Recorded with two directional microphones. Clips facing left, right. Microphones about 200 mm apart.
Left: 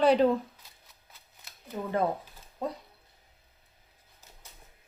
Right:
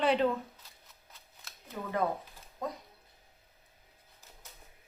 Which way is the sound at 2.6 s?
30° left (ahead or behind).